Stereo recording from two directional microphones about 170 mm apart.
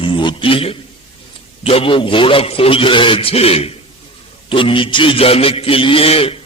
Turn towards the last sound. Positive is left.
turn(degrees=35)  # may be behind; listen again after turning